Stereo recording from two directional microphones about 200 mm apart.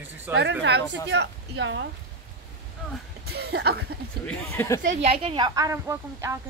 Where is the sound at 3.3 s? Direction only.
55° right (ahead or behind).